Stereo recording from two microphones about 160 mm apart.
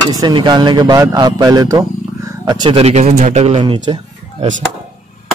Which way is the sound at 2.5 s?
35° right (ahead or behind).